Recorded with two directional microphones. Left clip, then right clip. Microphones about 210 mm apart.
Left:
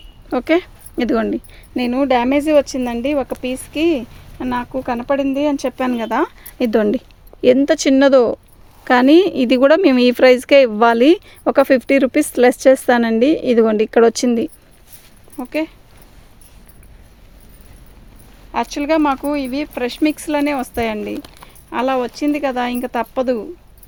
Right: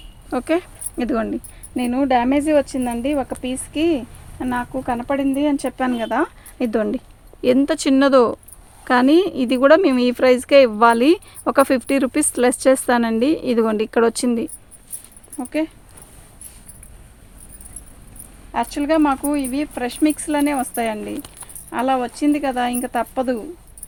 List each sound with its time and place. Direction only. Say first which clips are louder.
0.3 s speech: left 4 dB; 35° left (ahead or behind)
7.4 s speech: left 5 dB; 30° left (ahead or behind)
15.4 s speech: left 1 dB; 50° left (ahead or behind)
18.5 s speech: left 2 dB; 45° left (ahead or behind)